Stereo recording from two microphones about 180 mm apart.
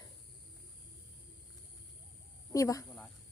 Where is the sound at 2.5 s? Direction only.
20° left (ahead or behind).